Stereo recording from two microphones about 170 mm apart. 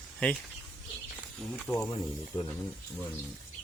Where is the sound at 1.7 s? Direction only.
10° left (ahead or behind).